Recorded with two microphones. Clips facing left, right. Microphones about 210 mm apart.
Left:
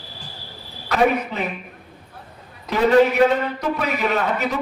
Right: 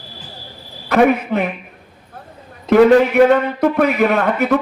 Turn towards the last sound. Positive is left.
turn(degrees=-55)  # may be behind; listen again after turning